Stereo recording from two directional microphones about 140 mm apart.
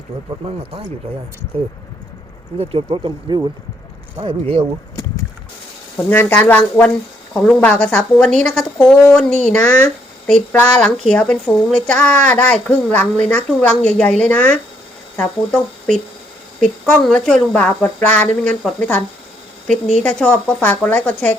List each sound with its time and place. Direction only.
0.4 s speech: 40° right (ahead or behind)
2.6 s speech: 40° right (ahead or behind)
4.2 s speech: 40° right (ahead or behind)
6.1 s speech: 15° left (ahead or behind)
16.6 s speech: 5° left (ahead or behind)